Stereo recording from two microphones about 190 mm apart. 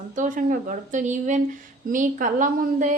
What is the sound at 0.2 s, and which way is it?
A woman's voice, 45° right (ahead or behind).